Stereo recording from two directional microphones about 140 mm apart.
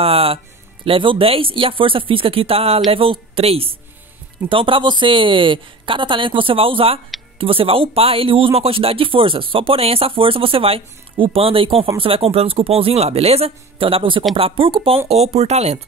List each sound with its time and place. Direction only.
0.0 s speech: 45° right (ahead or behind)
15.0 s speech: 45° right (ahead or behind)